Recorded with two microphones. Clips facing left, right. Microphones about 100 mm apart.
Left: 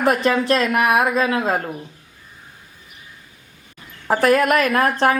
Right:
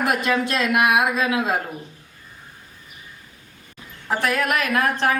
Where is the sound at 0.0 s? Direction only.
35° left (ahead or behind).